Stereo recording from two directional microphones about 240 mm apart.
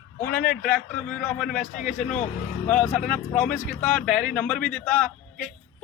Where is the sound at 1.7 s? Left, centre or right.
Left.